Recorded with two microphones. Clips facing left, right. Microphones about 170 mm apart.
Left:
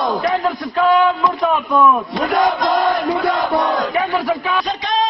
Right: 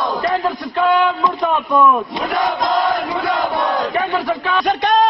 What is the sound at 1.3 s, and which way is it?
Speech, centre (ahead or behind).